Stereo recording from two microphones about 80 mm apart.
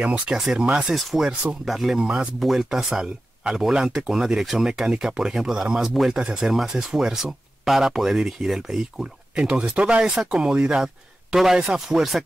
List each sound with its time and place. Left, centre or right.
0.0 s speech: centre